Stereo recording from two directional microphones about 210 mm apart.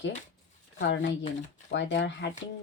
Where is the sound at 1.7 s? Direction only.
60° left (ahead or behind).